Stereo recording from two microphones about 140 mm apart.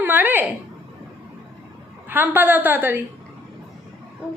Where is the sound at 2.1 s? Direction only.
15° right (ahead or behind).